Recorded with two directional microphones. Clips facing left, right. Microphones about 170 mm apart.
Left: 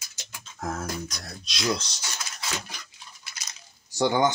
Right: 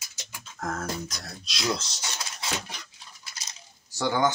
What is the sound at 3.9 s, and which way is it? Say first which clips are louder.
Speech: left 2 dB; 20° left (ahead or behind).